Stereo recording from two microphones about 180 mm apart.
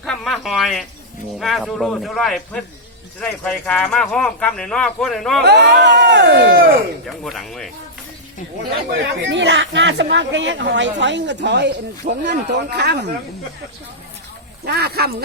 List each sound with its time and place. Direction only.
0.0 s speech: centre (ahead or behind)
5.4 s speech: 70° right (ahead or behind)
7.3 s speech: centre (ahead or behind)
8.9 s speech: 70° right (ahead or behind); by 10.9 s 90° right
11.0 s speech: 80° right
14.6 s speech: 60° right (ahead or behind)